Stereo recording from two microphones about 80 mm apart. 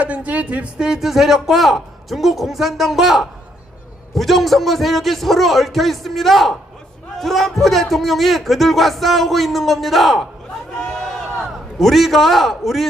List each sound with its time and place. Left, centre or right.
0.0 s speech: centre
0.9 s a man's voice: centre
10.8 s a sound: centre
11.8 s a man's voice: centre